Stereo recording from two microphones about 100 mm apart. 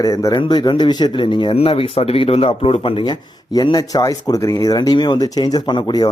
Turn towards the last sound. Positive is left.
turn(degrees=45)  # may be behind; listen again after turning